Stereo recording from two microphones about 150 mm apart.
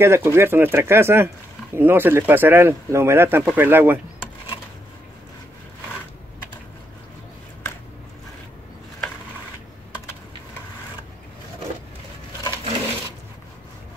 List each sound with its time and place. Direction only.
0.0 s speech: 15° right (ahead or behind)